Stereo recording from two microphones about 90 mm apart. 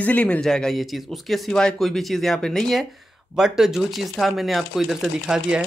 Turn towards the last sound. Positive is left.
turn(degrees=-10)  # may be behind; listen again after turning